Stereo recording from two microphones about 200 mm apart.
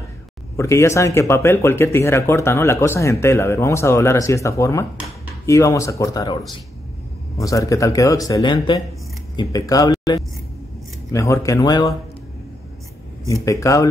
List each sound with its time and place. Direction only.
0.6 s speech: 15° left (ahead or behind)
13.3 s speech: 15° left (ahead or behind)